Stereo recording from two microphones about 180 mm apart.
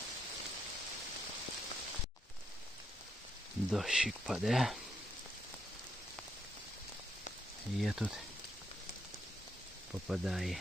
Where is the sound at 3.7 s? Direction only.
Centre (ahead or behind).